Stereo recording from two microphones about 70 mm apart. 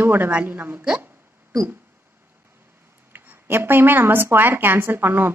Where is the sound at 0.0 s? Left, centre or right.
Right.